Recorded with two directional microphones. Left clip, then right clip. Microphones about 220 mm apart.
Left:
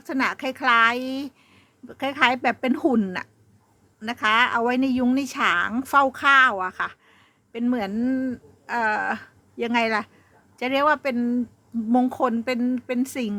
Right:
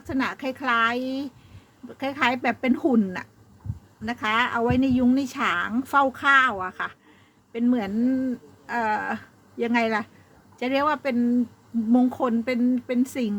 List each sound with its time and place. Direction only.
0.0 s speech: 15° left (ahead or behind)